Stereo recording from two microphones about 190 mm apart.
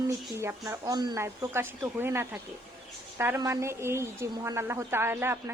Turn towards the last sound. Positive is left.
turn(degrees=-15)  # may be behind; listen again after turning